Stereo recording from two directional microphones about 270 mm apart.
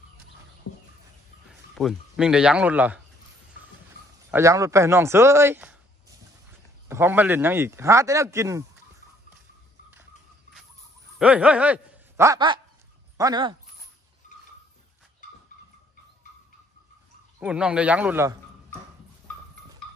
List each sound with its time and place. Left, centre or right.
0.7 s bird: left
1.5 s a man's voice: centre
4.3 s speech: centre
6.9 s speech: centre
11.1 s a man's voice: centre
17.4 s speech: centre